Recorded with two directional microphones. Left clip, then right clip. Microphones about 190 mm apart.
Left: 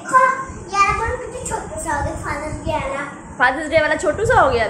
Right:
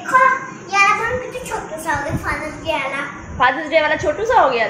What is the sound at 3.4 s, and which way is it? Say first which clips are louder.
A woman's voice: right 1 dB; 10° left (ahead or behind).